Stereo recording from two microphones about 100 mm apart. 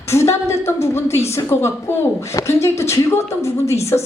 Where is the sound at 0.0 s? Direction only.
25° left (ahead or behind).